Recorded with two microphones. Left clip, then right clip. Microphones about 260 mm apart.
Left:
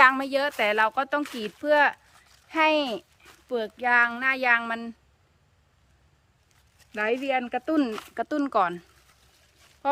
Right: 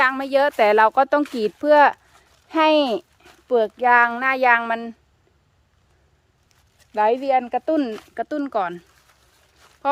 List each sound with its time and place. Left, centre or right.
0.0 s speech: centre
0.5 s a child's voice: right
6.7 s a child's voice: centre
9.8 s speech: centre